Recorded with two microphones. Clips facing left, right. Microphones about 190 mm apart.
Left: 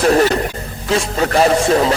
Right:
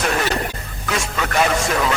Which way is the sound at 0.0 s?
35° left (ahead or behind).